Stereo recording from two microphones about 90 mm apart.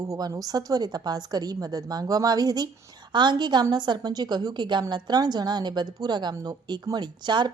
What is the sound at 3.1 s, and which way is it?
A woman's voice, 55° right (ahead or behind).